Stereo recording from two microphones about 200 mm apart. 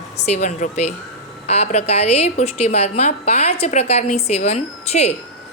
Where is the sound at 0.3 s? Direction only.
35° left (ahead or behind).